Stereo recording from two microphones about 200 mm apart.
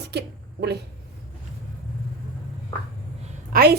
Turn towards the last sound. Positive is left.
turn(degrees=-50)  # may be behind; listen again after turning